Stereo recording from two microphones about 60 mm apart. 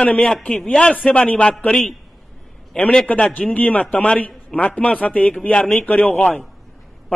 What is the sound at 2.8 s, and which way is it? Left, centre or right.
Speech, centre.